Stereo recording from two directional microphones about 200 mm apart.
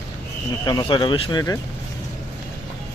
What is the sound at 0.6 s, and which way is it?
Speech, 20° left (ahead or behind).